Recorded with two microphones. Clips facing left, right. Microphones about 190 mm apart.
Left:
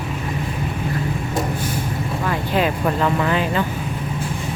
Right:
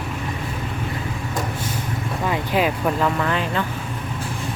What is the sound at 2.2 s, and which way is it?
Speech, 15° right (ahead or behind).